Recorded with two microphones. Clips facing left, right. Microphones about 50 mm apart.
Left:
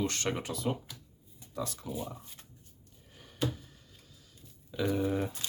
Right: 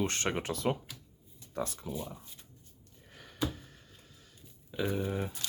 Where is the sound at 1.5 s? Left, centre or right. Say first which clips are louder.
Right 1 dB; right.